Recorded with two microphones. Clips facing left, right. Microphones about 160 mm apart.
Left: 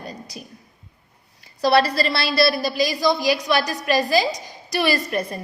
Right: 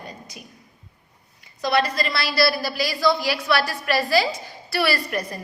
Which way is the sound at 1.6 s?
35° left (ahead or behind).